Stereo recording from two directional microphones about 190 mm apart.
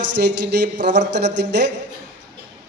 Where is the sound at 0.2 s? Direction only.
60° right (ahead or behind).